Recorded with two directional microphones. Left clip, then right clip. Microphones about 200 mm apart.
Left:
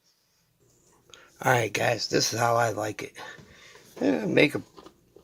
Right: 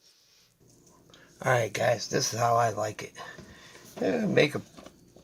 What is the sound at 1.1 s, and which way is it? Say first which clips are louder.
Speech: left 2 dB; 40° left (ahead or behind).